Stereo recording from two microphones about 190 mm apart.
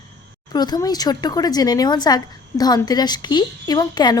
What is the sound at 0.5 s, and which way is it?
A woman's voice, 20° left (ahead or behind).